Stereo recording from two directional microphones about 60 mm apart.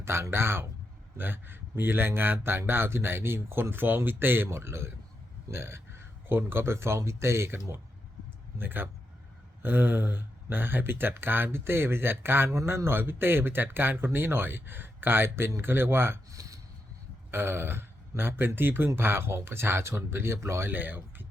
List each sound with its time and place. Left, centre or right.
0.0 s a man's voice: right
8.5 s a man's voice: right
12.5 s a man's voice: right
16.3 s a sound: right
17.3 s a man's voice: right
20.7 s speech: right